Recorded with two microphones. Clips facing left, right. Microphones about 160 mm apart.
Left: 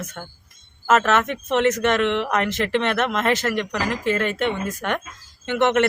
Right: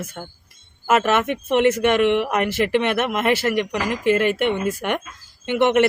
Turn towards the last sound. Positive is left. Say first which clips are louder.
# right 2 dB
turn(degrees=-10)  # may be behind; listen again after turning